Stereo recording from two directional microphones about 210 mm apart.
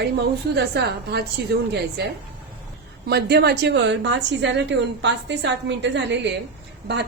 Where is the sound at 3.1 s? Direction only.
50° right (ahead or behind).